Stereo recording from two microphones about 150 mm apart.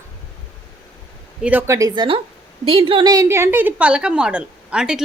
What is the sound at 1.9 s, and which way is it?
A woman's voice, 35° right (ahead or behind).